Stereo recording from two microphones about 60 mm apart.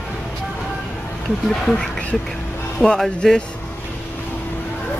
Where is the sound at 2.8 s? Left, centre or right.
Centre.